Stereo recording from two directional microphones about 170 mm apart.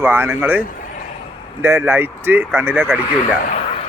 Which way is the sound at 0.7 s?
55° left (ahead or behind).